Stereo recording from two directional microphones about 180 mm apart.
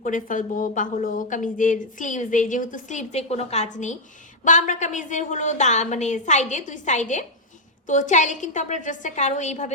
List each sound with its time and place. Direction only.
0.0 s a woman's voice: 45° left (ahead or behind)